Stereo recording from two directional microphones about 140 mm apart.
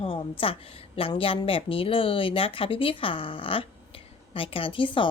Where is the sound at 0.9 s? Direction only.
40° left (ahead or behind).